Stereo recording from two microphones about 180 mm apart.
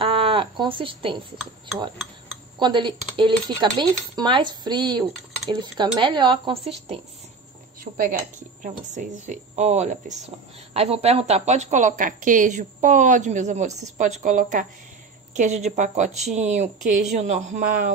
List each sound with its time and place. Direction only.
0.0 s a sound: 30° right (ahead or behind)
2.6 s speech: 25° right (ahead or behind)
7.8 s a woman's voice: 50° right (ahead or behind)